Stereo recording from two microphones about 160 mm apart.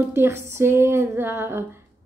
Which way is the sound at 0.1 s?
15° right (ahead or behind).